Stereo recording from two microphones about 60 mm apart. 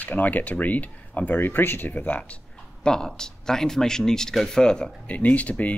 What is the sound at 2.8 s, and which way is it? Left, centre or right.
Speech, centre.